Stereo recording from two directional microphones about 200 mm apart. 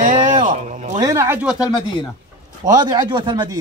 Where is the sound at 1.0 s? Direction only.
15° right (ahead or behind).